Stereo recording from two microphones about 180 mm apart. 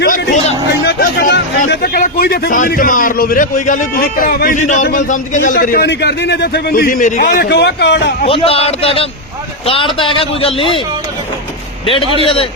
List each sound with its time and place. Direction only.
0.0 s hubbub: 55° left (ahead or behind)
0.9 s a man's voice: 60° left (ahead or behind)
7.3 s a man's voice: 65° left (ahead or behind)
8.3 s a man's voice: 30° left (ahead or behind)
12.2 s speech: 30° left (ahead or behind)